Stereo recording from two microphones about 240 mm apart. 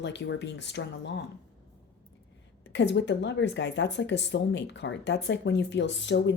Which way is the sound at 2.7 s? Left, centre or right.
Left.